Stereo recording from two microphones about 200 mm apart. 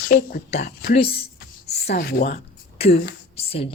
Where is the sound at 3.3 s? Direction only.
30° left (ahead or behind).